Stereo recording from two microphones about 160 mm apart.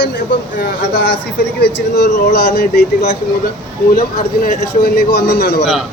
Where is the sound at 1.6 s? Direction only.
90° left.